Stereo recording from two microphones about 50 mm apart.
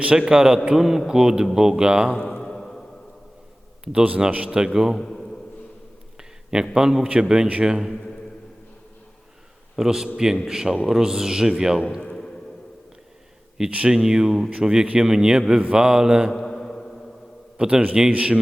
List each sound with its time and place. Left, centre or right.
0.0 s a man's voice: centre
2.1 s a sound: centre
3.9 s a man's voice: right
4.9 s a man's voice: centre
6.1 s a sound: centre
6.7 s a man's voice: centre
9.7 s a man's voice: centre
12.1 s a sound: centre
13.7 s speech: right
13.9 s a man's voice: centre
16.3 s mantra: centre
17.6 s a man's voice: centre